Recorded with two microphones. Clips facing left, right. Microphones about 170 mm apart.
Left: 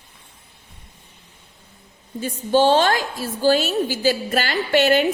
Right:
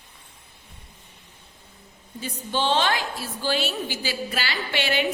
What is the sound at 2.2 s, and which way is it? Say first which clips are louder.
A woman's voice: left 10 dB; 45° left (ahead or behind).